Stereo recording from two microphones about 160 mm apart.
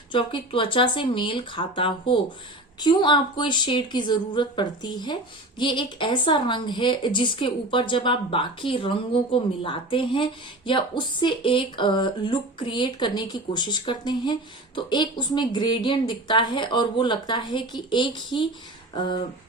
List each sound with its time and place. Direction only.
0.1 s a woman's voice: 30° left (ahead or behind)